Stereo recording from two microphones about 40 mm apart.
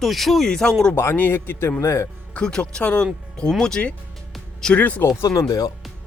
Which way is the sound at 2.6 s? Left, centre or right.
Left.